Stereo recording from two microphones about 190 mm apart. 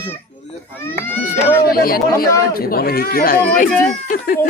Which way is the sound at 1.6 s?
50° left (ahead or behind).